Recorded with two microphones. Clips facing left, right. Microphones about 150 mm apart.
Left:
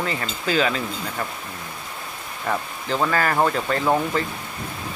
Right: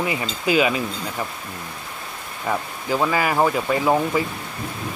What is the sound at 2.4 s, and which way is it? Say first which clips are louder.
Speech: right 1 dB; 10° right (ahead or behind).